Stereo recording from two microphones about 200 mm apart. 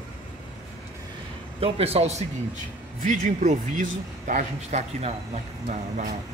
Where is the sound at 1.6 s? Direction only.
30° right (ahead or behind).